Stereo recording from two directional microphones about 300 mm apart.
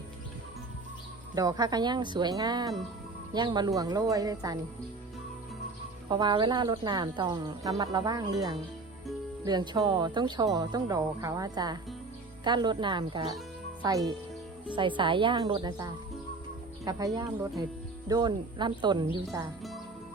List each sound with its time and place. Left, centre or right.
1.4 s a woman's voice: centre
6.1 s a woman's voice: centre
18.1 s a woman's voice: centre